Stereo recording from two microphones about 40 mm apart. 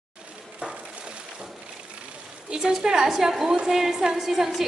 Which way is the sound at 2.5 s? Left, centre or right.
Centre.